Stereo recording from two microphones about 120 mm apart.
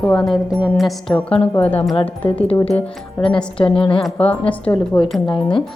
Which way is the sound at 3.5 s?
50° left (ahead or behind).